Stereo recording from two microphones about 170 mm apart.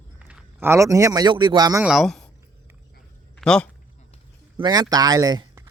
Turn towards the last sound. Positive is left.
turn(degrees=-20)  # may be behind; listen again after turning